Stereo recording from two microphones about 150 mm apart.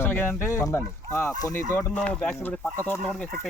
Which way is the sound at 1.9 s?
10° left (ahead or behind).